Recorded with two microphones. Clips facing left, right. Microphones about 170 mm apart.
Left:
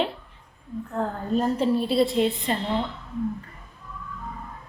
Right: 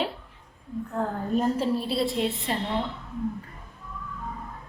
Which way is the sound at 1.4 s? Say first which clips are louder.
Left 3 dB; centre (ahead or behind).